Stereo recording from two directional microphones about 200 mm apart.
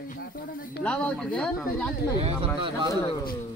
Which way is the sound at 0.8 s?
5° left (ahead or behind).